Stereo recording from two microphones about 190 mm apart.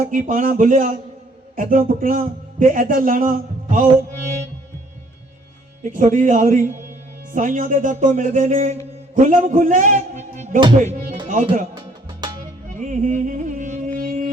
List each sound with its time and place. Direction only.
0.0 s a man's voice: 45° right (ahead or behind)
5.8 s a man's voice: 40° right (ahead or behind)
11.7 s music: 25° right (ahead or behind)
12.6 s music: 40° right (ahead or behind)